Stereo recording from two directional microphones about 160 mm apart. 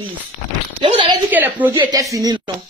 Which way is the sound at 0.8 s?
30° right (ahead or behind).